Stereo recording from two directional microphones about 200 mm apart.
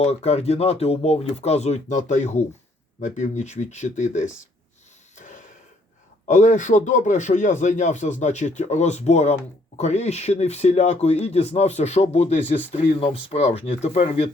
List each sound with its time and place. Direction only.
0.0 s speech: 30° left (ahead or behind)
5.1 s a sound: 40° left (ahead or behind)
6.2 s speech: 40° left (ahead or behind)